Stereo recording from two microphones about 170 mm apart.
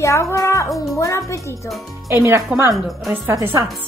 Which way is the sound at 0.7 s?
Centre (ahead or behind).